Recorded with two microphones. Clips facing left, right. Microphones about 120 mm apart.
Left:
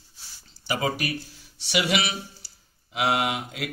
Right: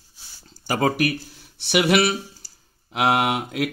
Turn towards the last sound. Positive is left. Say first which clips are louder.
# right 4 dB
turn(degrees=-55)  # may be behind; listen again after turning